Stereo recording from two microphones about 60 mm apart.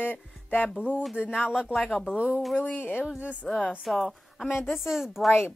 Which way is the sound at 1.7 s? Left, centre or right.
Centre.